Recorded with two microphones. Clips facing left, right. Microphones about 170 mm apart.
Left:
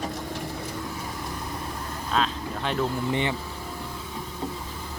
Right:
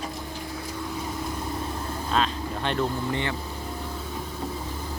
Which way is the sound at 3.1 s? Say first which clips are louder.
Left 2 dB; 20° left (ahead or behind).